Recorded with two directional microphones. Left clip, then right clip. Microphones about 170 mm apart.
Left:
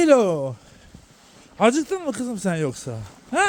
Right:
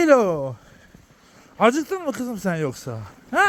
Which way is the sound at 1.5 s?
20° left (ahead or behind).